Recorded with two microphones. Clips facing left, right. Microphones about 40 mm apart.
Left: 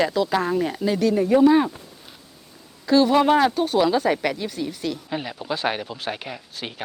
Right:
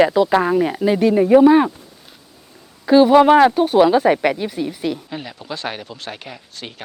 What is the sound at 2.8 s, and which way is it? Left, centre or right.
Speech, right.